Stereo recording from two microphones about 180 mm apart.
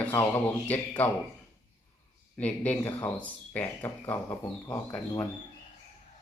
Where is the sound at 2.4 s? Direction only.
10° left (ahead or behind).